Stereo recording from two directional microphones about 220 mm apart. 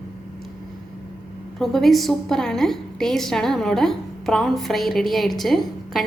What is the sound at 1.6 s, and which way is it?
A woman's voice, centre (ahead or behind).